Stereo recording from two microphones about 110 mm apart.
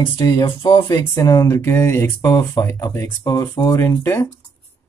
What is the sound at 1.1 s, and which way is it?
Speech, 30° left (ahead or behind).